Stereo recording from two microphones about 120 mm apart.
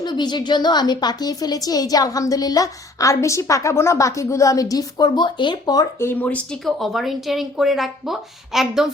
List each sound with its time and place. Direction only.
0.0 s a woman's voice: 40° left (ahead or behind)
6.0 s speech: 15° left (ahead or behind); by 8.9 s 5° right (ahead or behind)